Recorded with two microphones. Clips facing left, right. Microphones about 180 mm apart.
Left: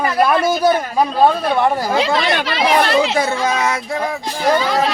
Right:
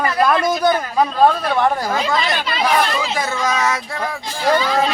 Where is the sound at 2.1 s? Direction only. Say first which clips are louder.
Left 3 dB; 70° left (ahead or behind).